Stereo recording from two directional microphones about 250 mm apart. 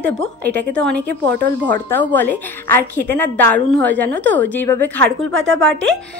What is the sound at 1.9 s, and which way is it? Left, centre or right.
A woman's voice, centre.